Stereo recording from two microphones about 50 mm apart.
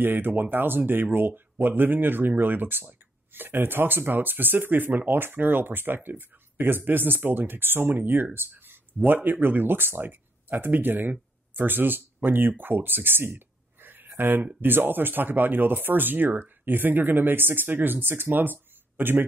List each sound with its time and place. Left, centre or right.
0.0 s speech: right